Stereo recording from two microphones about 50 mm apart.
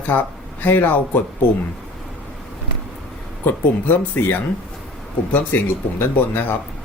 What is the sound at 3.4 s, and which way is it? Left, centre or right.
Speech, left.